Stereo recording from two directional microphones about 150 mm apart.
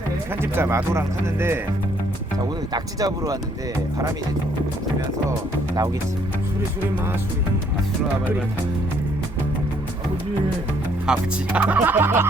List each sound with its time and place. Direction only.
0.5 s speech: 15° right (ahead or behind)
2.7 s speech: 25° right (ahead or behind)
11.0 s speech: 5° right (ahead or behind)